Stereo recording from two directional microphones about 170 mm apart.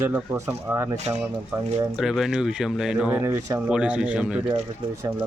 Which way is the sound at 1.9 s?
Centre (ahead or behind).